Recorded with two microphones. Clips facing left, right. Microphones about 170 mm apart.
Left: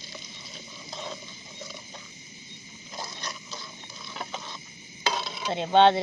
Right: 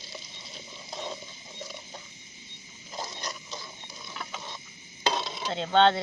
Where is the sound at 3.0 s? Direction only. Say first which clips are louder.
Right 1 dB; 20° right (ahead or behind).